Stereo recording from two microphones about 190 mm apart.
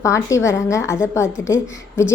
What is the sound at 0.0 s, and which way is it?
A woman's voice, 15° left (ahead or behind).